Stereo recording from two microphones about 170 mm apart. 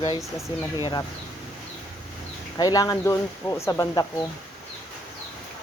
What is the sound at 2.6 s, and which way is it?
Speech, 20° left (ahead or behind).